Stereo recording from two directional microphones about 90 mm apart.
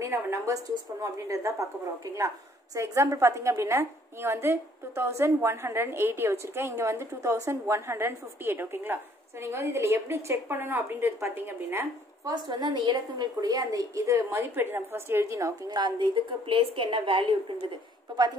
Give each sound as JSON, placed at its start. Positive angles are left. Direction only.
{"t": 0.0, "sound": "a woman's voice", "side_deg": -35}
{"t": 12.3, "sound": "a woman's voice", "side_deg": -50}
{"t": 15.7, "sound": "a woman's voice", "side_deg": -60}